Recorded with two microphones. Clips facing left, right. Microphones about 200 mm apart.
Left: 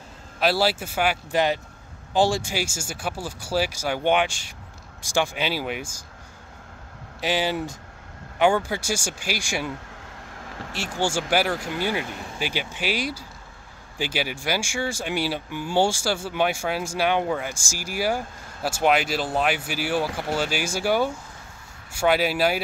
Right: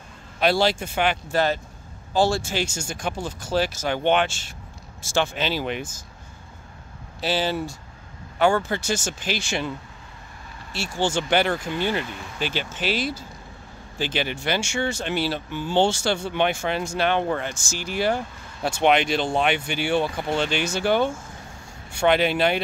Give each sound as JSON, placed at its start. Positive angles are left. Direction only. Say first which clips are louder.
{"t": 0.4, "sound": "speech", "louder": "right 2 dB", "side_deg": 5}
{"t": 7.2, "sound": "speech", "louder": "even", "side_deg": 15}
{"t": 10.3, "sound": "a sound", "louder": "left 8 dB", "side_deg": 90}
{"t": 11.0, "sound": "speech", "louder": "right 1 dB", "side_deg": 10}